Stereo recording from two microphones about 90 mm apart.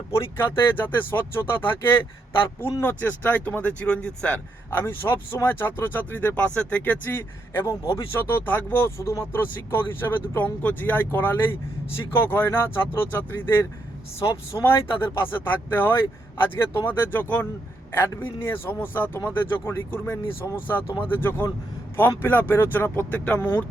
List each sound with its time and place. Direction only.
0.1 s speech: 30° left (ahead or behind); by 4.4 s 10° left (ahead or behind)
4.7 s speech: 25° left (ahead or behind)